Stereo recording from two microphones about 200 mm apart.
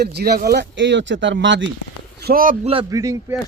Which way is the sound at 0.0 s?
55° right (ahead or behind).